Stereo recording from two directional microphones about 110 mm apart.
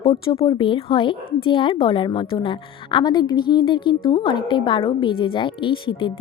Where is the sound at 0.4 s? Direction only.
50° left (ahead or behind).